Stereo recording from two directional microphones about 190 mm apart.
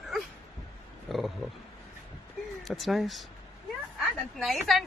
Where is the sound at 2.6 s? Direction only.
Centre (ahead or behind).